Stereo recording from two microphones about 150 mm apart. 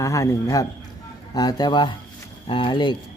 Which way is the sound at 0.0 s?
20° left (ahead or behind).